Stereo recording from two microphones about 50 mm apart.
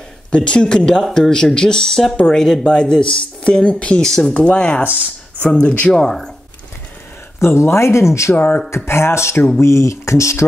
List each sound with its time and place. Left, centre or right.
0.3 s speech: centre
4.0 s speech: centre
4.3 s speech: left
4.8 s speech: right
5.6 s speech: left
5.9 s speech: centre
7.3 s speech: left
8.4 s speech: left
8.6 s speech: left